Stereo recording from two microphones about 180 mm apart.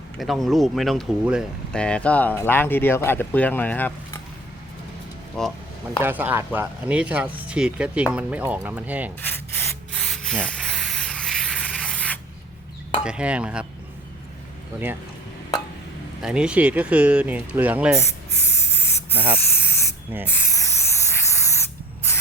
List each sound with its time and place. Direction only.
0.2 s speech: centre (ahead or behind)
5.4 s speech: 5° left (ahead or behind)
6.0 s speech: 10° right (ahead or behind)
9.2 s spray: 10° left (ahead or behind)
13.1 s speech: 5° right (ahead or behind)
16.2 s speech: 5° right (ahead or behind)
18.3 s spray: 15° left (ahead or behind)